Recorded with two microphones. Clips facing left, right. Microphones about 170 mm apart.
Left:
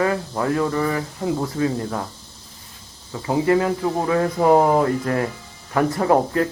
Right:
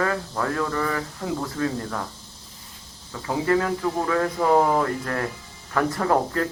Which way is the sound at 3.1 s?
20° left (ahead or behind).